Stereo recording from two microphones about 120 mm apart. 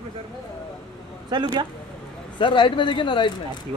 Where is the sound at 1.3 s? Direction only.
35° right (ahead or behind).